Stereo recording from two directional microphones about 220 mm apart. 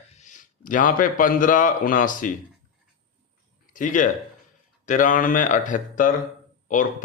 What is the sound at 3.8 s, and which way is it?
A man's voice, 35° left (ahead or behind).